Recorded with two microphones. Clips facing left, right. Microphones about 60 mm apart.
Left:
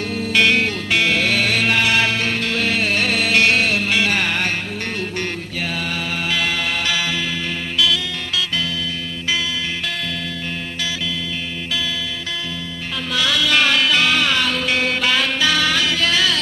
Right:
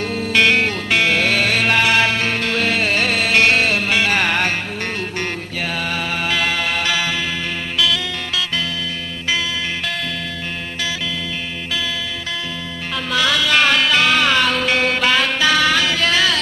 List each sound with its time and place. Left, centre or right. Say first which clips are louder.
0.0 s music: right 1 dB; right
2.4 s music: right 2 dB; right
3.1 s music: right 1 dB; right
4.9 s music: right 1 dB; right
6.5 s music: right 2 dB; right
13.1 s music: right 2 dB; right
13.5 s music: right 1 dB; right
14.9 s music: right 2 dB; right